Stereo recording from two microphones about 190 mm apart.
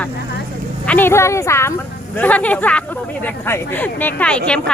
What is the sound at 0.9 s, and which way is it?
Speech, 10° left (ahead or behind).